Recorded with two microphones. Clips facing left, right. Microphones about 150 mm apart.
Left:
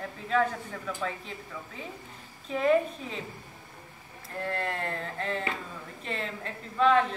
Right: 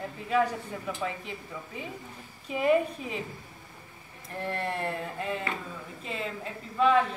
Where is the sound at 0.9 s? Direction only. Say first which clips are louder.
Even; 15° right (ahead or behind).